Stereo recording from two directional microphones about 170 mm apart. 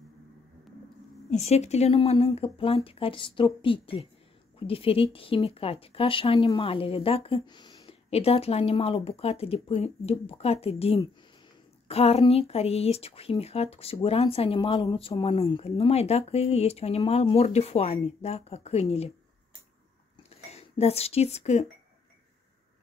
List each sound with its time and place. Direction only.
1.3 s speech: 40° left (ahead or behind); by 7.9 s 25° left (ahead or behind)
8.1 s speech: 35° left (ahead or behind)
20.2 s speech: 40° left (ahead or behind)